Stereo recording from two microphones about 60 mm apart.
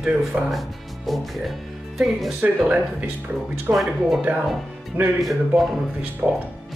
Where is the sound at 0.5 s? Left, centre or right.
Centre.